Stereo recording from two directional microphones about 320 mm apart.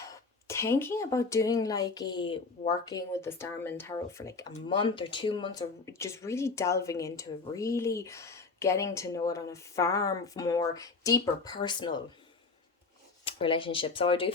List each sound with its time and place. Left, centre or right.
0.0 s speech: centre
13.2 s speech: centre